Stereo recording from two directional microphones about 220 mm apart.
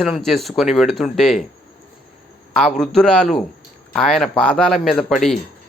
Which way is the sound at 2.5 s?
Centre (ahead or behind).